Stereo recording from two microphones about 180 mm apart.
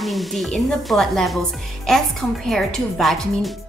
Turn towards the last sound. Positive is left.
turn(degrees=0)  # may be behind; listen again after turning